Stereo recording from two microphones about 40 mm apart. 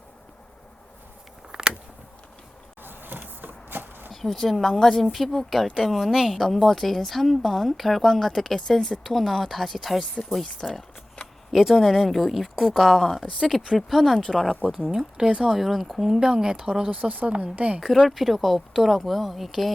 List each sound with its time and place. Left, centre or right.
1.5 s a sound: centre
2.8 s power windows: right
3.4 s chopping: right
4.1 s speech: centre
6.1 s speech: centre
6.4 s speech: centre
14.7 s speech: centre
16.9 s speech: right
17.7 s speech: centre